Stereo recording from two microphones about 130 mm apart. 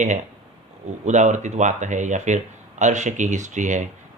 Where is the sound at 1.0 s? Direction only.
70° right (ahead or behind).